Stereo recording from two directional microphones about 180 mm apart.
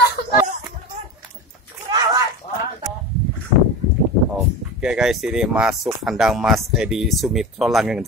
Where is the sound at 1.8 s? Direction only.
25° right (ahead or behind).